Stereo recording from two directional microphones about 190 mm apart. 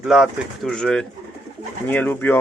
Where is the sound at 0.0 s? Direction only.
5° right (ahead or behind).